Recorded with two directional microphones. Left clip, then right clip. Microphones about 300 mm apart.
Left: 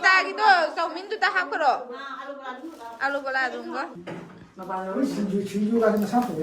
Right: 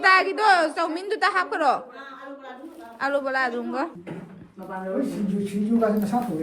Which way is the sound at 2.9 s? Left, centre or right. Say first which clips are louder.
Right 2 dB; centre.